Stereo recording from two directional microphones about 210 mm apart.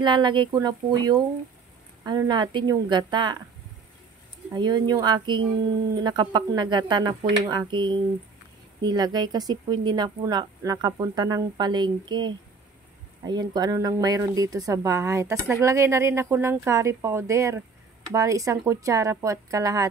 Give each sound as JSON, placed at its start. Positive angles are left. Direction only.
{"t": 0.0, "sound": "speech", "side_deg": -20}
{"t": 4.6, "sound": "speech", "side_deg": -20}